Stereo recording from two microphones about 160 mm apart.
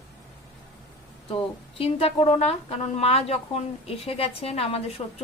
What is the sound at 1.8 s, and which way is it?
Speech, 35° left (ahead or behind).